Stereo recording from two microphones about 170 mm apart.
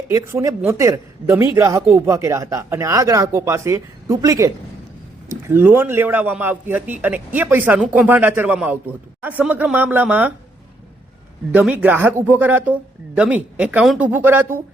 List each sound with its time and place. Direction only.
0.1 s a man's voice: 20° right (ahead or behind)
11.5 s a man's voice: 10° right (ahead or behind)